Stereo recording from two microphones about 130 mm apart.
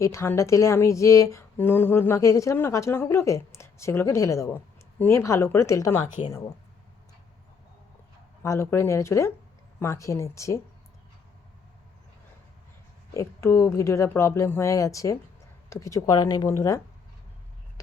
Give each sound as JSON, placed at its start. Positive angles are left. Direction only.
{"t": 0.0, "sound": "a woman's voice", "side_deg": 20}
{"t": 8.4, "sound": "a woman's voice", "side_deg": 20}
{"t": 13.1, "sound": "a woman's voice", "side_deg": 25}